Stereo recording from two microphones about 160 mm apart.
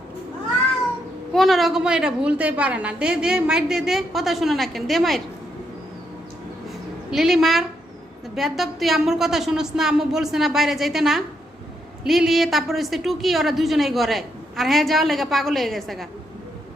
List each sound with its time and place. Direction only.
1.3 s a woman's voice: centre (ahead or behind)
6.7 s a sound: centre (ahead or behind)
8.4 s a woman's voice: centre (ahead or behind)